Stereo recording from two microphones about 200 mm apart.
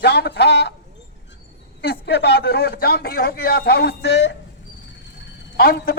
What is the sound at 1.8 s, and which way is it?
A man's voice, 55° left (ahead or behind).